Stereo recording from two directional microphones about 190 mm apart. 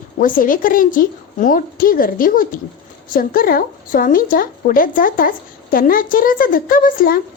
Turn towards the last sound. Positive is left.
turn(degrees=50)  # may be behind; listen again after turning